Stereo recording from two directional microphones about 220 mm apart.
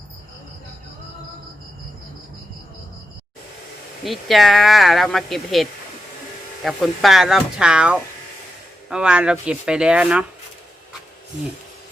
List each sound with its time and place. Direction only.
4.0 s speech: centre (ahead or behind)